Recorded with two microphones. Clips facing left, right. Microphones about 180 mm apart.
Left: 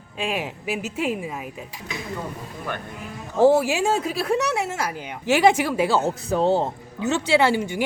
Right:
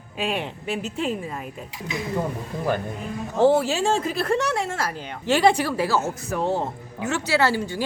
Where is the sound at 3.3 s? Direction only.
10° left (ahead or behind).